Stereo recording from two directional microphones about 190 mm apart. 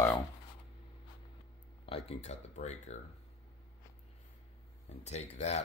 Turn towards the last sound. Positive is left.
turn(degrees=35)  # may be behind; listen again after turning